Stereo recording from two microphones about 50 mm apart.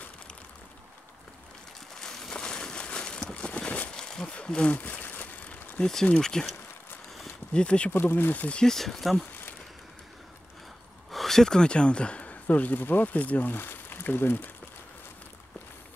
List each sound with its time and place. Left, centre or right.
2.0 s a sound: centre
3.9 s a sound: centre; by 5.3 s left
5.8 s speech: left
7.5 s speech: left
7.9 s speech: left
8.6 s speech: centre
11.1 s speech: centre; by 14.5 s left